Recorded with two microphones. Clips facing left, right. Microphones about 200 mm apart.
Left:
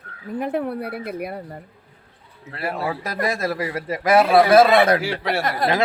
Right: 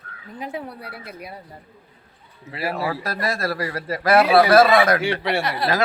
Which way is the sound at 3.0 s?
20° left (ahead or behind).